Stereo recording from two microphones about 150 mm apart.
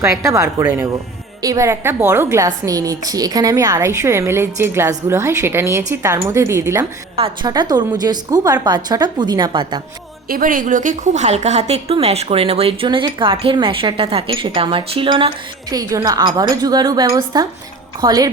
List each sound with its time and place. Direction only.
0.0 s a woman's voice: 20° right (ahead or behind)
7.2 s a woman's voice: 35° right (ahead or behind)
10.2 s a woman's voice: 70° right (ahead or behind); by 15.3 s 35° right (ahead or behind)
15.7 s a woman's voice: 20° right (ahead or behind)